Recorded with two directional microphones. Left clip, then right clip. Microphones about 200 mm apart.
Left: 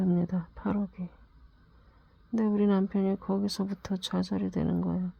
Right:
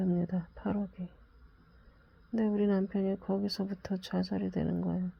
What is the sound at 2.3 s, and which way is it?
Speech, 20° left (ahead or behind).